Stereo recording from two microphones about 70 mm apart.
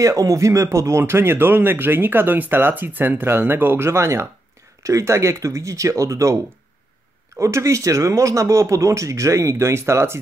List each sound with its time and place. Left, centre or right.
0.0 s speech: right